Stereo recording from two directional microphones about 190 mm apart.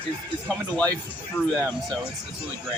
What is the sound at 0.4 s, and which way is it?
Speech, 10° left (ahead or behind).